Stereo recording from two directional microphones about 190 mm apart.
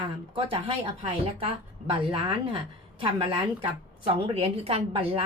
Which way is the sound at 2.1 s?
30° right (ahead or behind).